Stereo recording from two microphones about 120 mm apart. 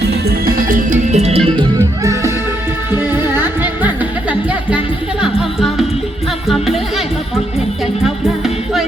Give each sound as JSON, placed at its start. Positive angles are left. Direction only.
{"t": 0.9, "sound": "music", "side_deg": -65}
{"t": 2.9, "sound": "music", "side_deg": -20}
{"t": 5.2, "sound": "music", "side_deg": 0}